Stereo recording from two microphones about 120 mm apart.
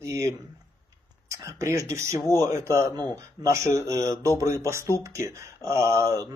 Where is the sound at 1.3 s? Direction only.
25° right (ahead or behind).